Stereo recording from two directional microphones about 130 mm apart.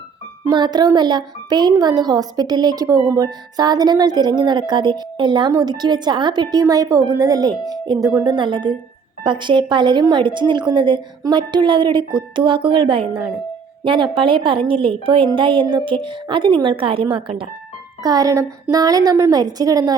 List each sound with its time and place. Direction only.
0.5 s a woman's voice: 35° right (ahead or behind)
18.0 s a woman's voice: 30° right (ahead or behind)